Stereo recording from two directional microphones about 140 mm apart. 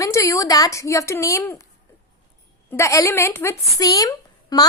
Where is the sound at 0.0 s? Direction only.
20° left (ahead or behind).